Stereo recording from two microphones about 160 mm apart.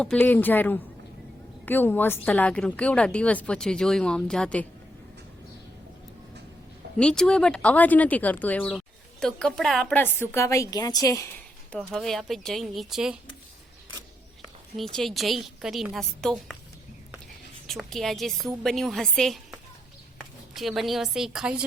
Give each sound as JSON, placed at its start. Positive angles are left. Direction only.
{"t": 0.0, "sound": "a woman's voice", "side_deg": 10}
{"t": 6.9, "sound": "a woman's voice", "side_deg": 5}
{"t": 11.7, "sound": "a woman's voice", "side_deg": 0}
{"t": 14.9, "sound": "a woman's voice", "side_deg": 0}
{"t": 17.7, "sound": "a woman's voice", "side_deg": 0}